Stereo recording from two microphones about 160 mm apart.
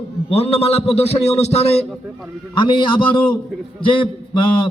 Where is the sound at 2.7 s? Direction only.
30° left (ahead or behind).